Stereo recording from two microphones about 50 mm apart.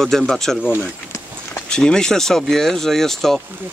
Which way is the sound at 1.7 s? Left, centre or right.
Centre.